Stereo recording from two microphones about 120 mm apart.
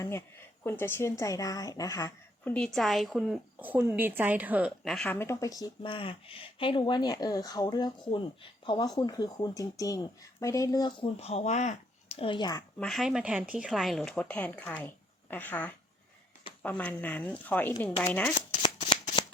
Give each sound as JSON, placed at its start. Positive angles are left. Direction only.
{"t": 0.0, "sound": "speech", "side_deg": 20}
{"t": 2.4, "sound": "a woman's voice", "side_deg": 10}
{"t": 3.6, "sound": "a woman's voice", "side_deg": -15}
{"t": 4.8, "sound": "speech", "side_deg": 5}
{"t": 5.0, "sound": "speech", "side_deg": 20}
{"t": 5.8, "sound": "speech", "side_deg": 45}
{"t": 11.0, "sound": "speech", "side_deg": 60}
{"t": 12.1, "sound": "speech", "side_deg": 45}
{"t": 12.8, "sound": "speech", "side_deg": 0}
{"t": 18.6, "sound": "shuffling cards", "side_deg": 45}